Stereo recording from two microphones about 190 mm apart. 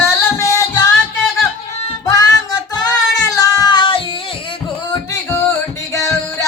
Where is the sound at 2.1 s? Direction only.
20° left (ahead or behind).